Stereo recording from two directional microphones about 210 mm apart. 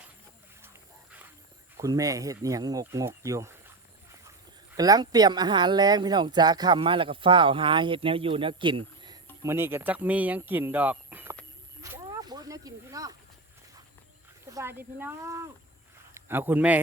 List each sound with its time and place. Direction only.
1.8 s speech: 15° right (ahead or behind)
4.8 s speech: 20° right (ahead or behind)
11.8 s a sound: 15° right (ahead or behind)
14.4 s a man's voice: 15° right (ahead or behind)